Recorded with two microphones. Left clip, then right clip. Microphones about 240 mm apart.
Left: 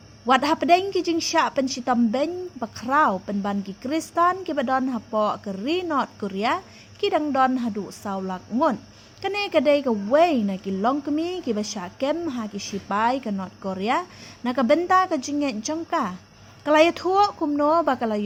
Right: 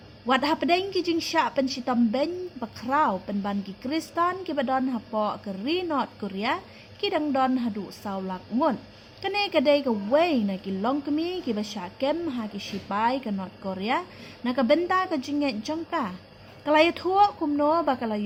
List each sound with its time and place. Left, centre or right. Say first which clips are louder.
0.3 s a woman's voice: left 5 dB; left